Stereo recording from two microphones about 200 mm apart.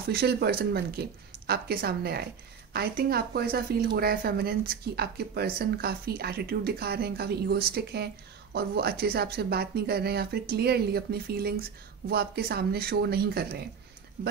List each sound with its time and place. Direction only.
0.1 s speech: 50° right (ahead or behind)